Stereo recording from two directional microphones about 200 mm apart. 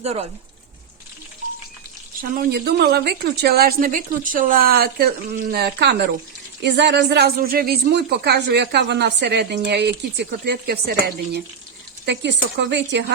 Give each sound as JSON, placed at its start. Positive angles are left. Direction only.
{"t": 0.0, "sound": "speech", "side_deg": -30}
{"t": 2.3, "sound": "a woman's voice", "side_deg": -50}